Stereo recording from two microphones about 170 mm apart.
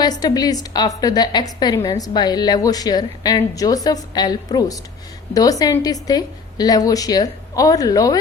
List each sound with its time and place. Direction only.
0.0 s a woman's voice: 25° left (ahead or behind)